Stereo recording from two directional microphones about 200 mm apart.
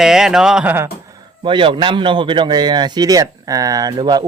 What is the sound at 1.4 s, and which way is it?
Speech, 25° right (ahead or behind).